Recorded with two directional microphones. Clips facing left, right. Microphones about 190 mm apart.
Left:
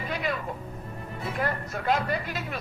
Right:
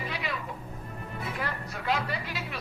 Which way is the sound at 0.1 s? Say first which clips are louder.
Left 9 dB; 45° left (ahead or behind).